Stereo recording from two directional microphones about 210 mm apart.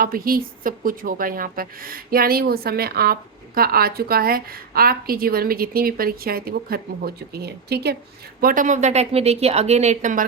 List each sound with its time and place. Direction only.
0.0 s a woman's voice: 45° right (ahead or behind)